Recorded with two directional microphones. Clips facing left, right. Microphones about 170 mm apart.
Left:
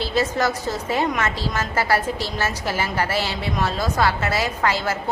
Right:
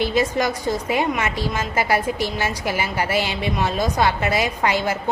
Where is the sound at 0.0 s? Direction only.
15° right (ahead or behind).